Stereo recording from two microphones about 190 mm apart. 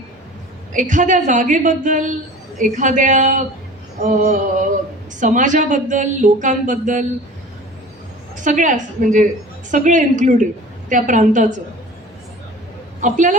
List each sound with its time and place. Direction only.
0.7 s speech: 40° right (ahead or behind)
8.4 s speech: 40° right (ahead or behind)
13.0 s speech: 40° right (ahead or behind)